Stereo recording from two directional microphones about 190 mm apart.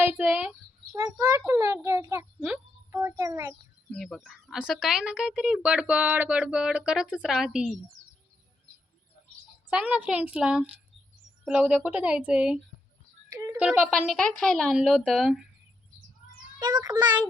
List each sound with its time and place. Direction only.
0.2 s a child's voice: 5° right (ahead or behind)
3.9 s speech: centre (ahead or behind)
9.6 s speech: 5° right (ahead or behind)
13.3 s a sound: 15° right (ahead or behind)
13.6 s speech: 5° right (ahead or behind)
16.6 s a child's voice: 20° right (ahead or behind)